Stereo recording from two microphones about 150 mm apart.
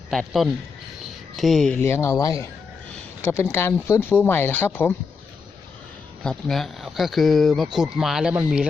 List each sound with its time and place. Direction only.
0.1 s speech: centre (ahead or behind)
1.8 s speech: 15° left (ahead or behind)
3.5 s speech: 15° left (ahead or behind)
6.2 s speech: centre (ahead or behind)